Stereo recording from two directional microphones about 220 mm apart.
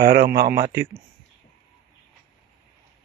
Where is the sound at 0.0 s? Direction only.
45° right (ahead or behind).